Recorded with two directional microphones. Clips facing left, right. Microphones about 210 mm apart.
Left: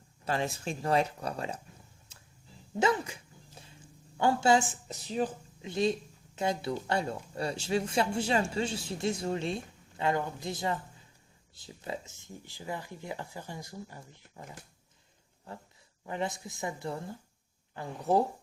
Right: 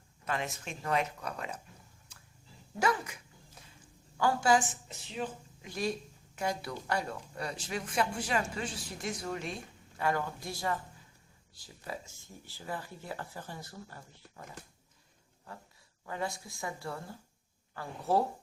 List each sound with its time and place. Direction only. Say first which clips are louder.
0.3 s speech: left 4 dB; 30° left (ahead or behind)
2.7 s a sound: left 3 dB; 25° left (ahead or behind)
4.2 s speech: left 2 dB; 25° left (ahead or behind)
4.9 s speech: left 6 dB; 40° left (ahead or behind)
5.6 s speech: left 6 dB; 25° left (ahead or behind)
16.0 s speech: left 3 dB; 20° left (ahead or behind)